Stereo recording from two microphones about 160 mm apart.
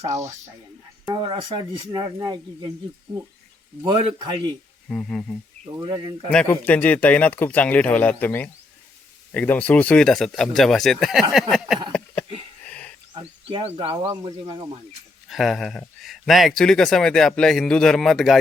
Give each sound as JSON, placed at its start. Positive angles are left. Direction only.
{"t": 0.0, "sound": "speech", "side_deg": -20}
{"t": 1.1, "sound": "speech", "side_deg": -30}
{"t": 3.8, "sound": "speech", "side_deg": -35}
{"t": 4.9, "sound": "speech", "side_deg": 5}
{"t": 5.8, "sound": "speech", "side_deg": -30}
{"t": 6.3, "sound": "speech", "side_deg": 10}
{"t": 11.9, "sound": "a sound", "side_deg": 5}
{"t": 13.1, "sound": "speech", "side_deg": -35}
{"t": 15.3, "sound": "speech", "side_deg": 0}